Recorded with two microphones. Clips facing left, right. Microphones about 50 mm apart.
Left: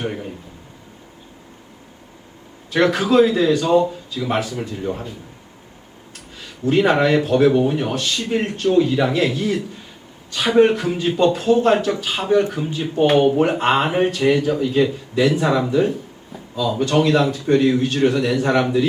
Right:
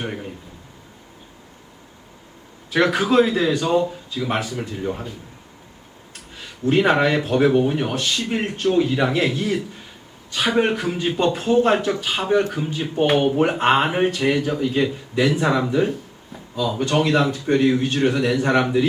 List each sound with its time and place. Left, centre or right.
0.0 s a sound: centre
2.7 s speech: centre
6.4 s rub: centre
11.9 s speech: centre
14.9 s rub: centre
15.3 s speech: centre
17.0 s rub: centre